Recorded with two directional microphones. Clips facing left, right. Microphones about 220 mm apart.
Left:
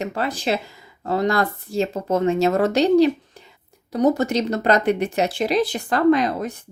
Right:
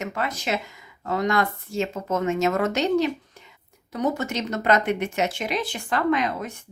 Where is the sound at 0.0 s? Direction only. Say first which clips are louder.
Left 4 dB; 30° left (ahead or behind).